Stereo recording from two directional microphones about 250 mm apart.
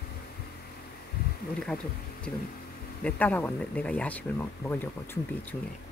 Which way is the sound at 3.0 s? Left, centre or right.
Centre.